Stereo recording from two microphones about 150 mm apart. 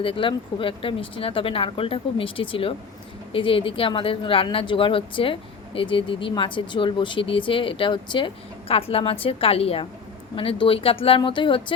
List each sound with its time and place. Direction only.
0.0 s speech: 35° left (ahead or behind)